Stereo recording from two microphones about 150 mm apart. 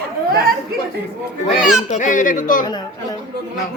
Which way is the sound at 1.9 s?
55° left (ahead or behind).